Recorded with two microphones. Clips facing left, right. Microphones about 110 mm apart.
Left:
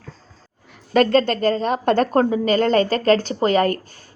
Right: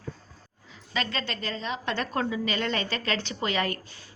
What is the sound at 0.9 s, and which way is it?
A woman's voice, 50° left (ahead or behind).